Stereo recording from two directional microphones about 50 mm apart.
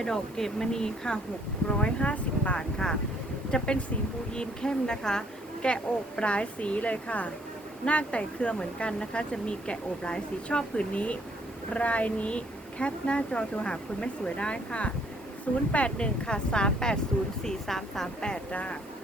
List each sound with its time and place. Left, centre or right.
0.0 s speech: centre
18.2 s speech: centre